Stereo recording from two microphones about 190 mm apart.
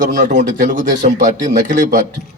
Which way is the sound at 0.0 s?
40° right (ahead or behind).